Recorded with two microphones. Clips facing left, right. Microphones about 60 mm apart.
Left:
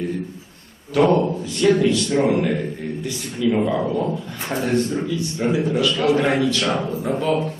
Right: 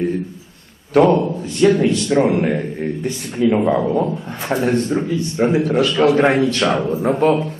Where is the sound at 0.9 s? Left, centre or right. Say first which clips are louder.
Right 3 dB; right.